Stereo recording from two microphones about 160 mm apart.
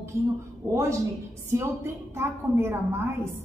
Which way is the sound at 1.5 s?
15° right (ahead or behind).